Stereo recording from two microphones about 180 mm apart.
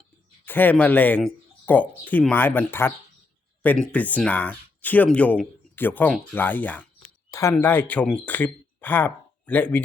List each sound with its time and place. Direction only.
0.4 s speech: 10° left (ahead or behind)
7.3 s a sound: 15° left (ahead or behind)
7.5 s speech: 10° left (ahead or behind)